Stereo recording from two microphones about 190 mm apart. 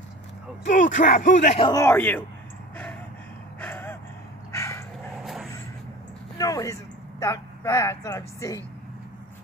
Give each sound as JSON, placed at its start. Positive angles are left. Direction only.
{"t": 0.7, "sound": "speech", "side_deg": 45}
{"t": 1.7, "sound": "a man's voice", "side_deg": 15}
{"t": 3.6, "sound": "gasp", "side_deg": 10}
{"t": 4.6, "sound": "dog", "side_deg": 15}
{"t": 5.1, "sound": "vehicle", "side_deg": 0}
{"t": 6.3, "sound": "speech", "side_deg": 20}